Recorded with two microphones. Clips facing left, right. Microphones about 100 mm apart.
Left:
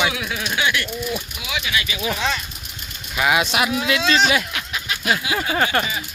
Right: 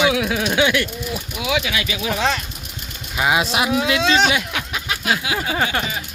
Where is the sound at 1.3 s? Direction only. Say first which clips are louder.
Right 4 dB; 90° right.